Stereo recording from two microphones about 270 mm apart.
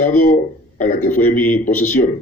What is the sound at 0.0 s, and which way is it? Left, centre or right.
A man's voice, left.